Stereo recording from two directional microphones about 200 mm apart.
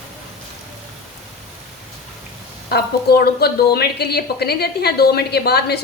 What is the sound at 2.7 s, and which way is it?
A woman's voice, 55° left (ahead or behind).